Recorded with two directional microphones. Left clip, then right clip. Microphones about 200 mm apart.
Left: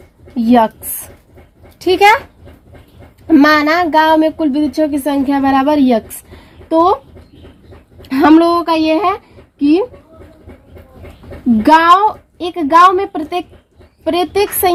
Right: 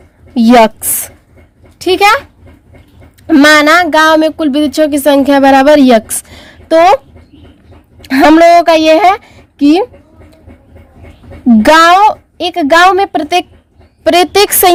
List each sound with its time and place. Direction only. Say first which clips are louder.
0.3 s a woman's voice: right 6 dB; 60° right (ahead or behind)
1.8 s speech: right 2 dB; 35° right (ahead or behind)
3.2 s speech: right 5 dB; 45° right (ahead or behind)
6.7 s speech: right 6 dB; 70° right (ahead or behind)
8.0 s a woman's voice: right 5 dB; 65° right (ahead or behind)
11.6 s a woman's voice: right 4 dB; 65° right (ahead or behind)